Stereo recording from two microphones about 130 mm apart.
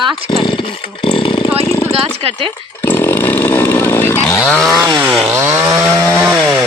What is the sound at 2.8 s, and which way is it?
Chainsaw, 15° left (ahead or behind).